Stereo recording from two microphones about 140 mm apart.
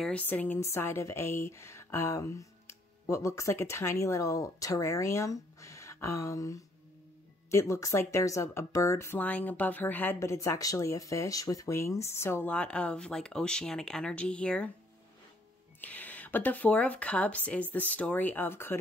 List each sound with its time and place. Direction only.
0.0 s speech: 10° left (ahead or behind)
15.8 s speech: 10° left (ahead or behind)